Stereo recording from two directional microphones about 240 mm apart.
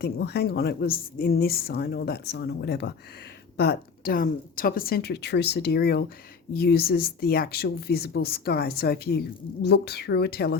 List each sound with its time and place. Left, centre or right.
0.0 s speech: left